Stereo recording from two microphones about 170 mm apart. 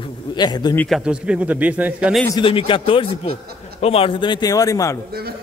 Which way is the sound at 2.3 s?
30° left (ahead or behind).